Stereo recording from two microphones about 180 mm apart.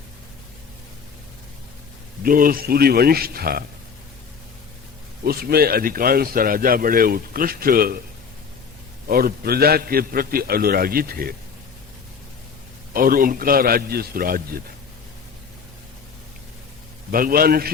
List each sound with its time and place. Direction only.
2.2 s a man's voice: 50° right (ahead or behind)
5.2 s a man's voice: 60° right (ahead or behind)
9.0 s a man's voice: 55° right (ahead or behind)
12.9 s a man's voice: 50° right (ahead or behind)
17.1 s a man's voice: 55° right (ahead or behind)